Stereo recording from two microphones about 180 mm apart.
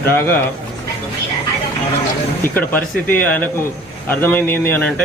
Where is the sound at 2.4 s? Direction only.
10° left (ahead or behind).